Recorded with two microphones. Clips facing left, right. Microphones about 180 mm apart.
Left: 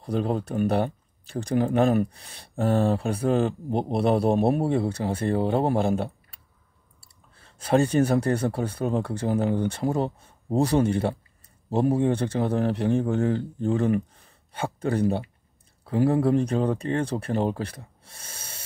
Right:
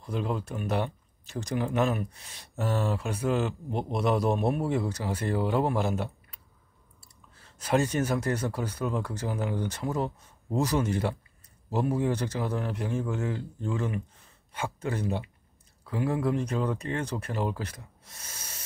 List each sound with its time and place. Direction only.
0.1 s speech: 35° left (ahead or behind)
0.7 s a sound: 35° left (ahead or behind)
1.5 s speech: 35° left (ahead or behind)
14.5 s speech: 35° left (ahead or behind)